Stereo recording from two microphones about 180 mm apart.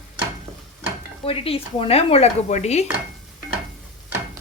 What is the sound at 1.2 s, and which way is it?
A woman's voice, 30° left (ahead or behind).